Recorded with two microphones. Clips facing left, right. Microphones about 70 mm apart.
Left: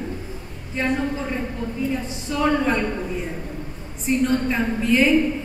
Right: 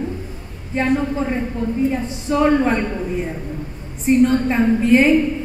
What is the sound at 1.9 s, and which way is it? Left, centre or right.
Speech, right.